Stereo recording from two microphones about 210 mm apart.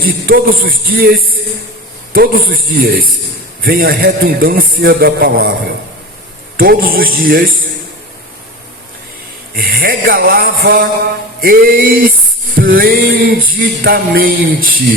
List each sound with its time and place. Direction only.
0.0 s music: 45° right (ahead or behind)
9.6 s music: 45° right (ahead or behind)